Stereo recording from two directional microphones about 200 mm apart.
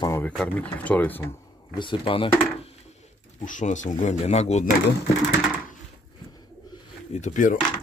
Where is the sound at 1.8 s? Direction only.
25° left (ahead or behind).